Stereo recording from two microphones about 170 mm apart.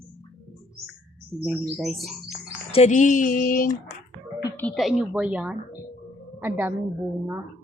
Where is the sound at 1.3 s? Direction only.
5° left (ahead or behind).